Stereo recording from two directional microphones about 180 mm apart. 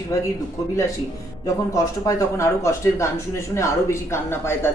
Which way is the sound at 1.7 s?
15° left (ahead or behind).